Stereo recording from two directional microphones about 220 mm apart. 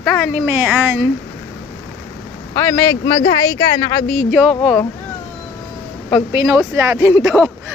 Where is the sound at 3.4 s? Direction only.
15° left (ahead or behind).